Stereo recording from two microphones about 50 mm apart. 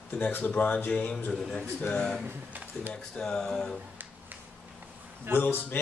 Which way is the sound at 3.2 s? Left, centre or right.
Centre.